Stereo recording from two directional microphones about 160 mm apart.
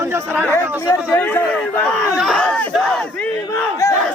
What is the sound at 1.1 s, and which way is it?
Battle cry, 10° left (ahead or behind).